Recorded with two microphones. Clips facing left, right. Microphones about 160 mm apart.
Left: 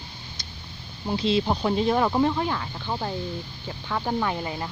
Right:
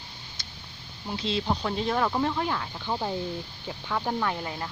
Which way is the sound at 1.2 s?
15° left (ahead or behind).